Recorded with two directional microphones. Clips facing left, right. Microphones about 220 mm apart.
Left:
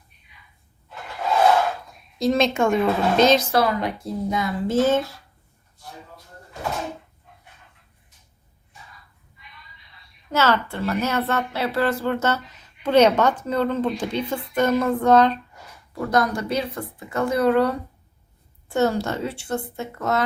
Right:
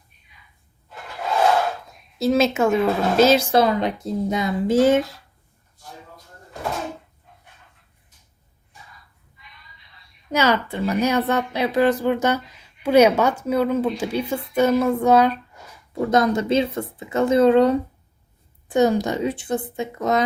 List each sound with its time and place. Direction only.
2.1 s a woman's voice: 5° right (ahead or behind)
3.5 s speech: 20° right (ahead or behind)
10.3 s a woman's voice: 15° right (ahead or behind)
15.9 s a woman's voice: 20° right (ahead or behind)